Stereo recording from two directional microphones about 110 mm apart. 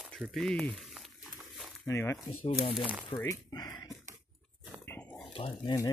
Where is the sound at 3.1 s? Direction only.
30° left (ahead or behind).